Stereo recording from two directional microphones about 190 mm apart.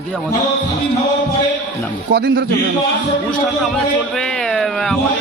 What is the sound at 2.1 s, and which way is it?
Speech, 55° right (ahead or behind).